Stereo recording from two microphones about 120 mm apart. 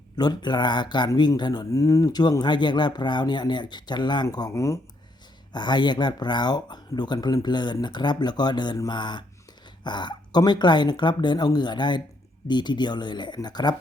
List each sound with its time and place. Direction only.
0.2 s speech: 35° left (ahead or behind)
5.5 s speech: 40° left (ahead or behind)